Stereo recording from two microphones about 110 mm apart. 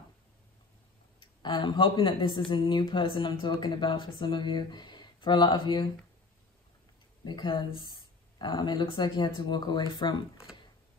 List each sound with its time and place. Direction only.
1.2 s speech: 50° left (ahead or behind)
7.2 s speech: 45° left (ahead or behind)